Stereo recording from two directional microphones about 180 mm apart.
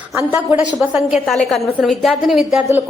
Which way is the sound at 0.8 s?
5° right (ahead or behind).